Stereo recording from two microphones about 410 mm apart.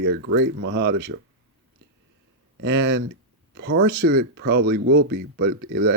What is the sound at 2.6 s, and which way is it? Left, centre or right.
Speech, right.